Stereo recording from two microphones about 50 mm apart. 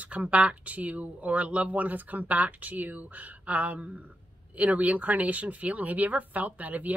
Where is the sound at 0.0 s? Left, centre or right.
Right.